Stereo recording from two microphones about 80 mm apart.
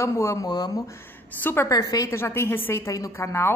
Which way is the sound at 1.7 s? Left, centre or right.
Left.